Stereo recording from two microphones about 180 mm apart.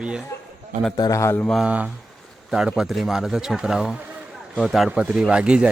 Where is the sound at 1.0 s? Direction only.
20° left (ahead or behind).